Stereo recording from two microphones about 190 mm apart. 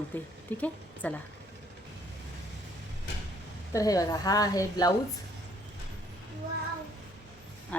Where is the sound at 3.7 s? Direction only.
20° left (ahead or behind).